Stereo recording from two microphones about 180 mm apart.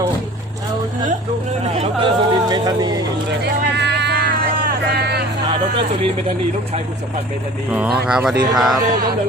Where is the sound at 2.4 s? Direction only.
25° right (ahead or behind).